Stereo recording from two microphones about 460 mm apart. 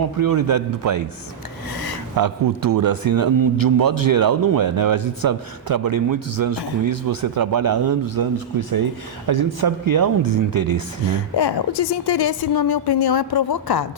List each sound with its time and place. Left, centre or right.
0.2 s a man's voice: right
2.1 s a man's voice: right
11.3 s a woman's voice: left